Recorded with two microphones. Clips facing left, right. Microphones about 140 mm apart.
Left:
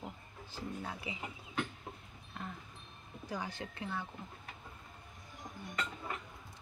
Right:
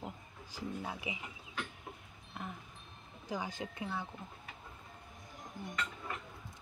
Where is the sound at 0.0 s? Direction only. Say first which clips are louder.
Right 1 dB; 15° right (ahead or behind).